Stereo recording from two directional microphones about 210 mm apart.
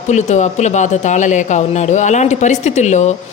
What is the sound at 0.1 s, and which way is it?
Speech, 35° left (ahead or behind).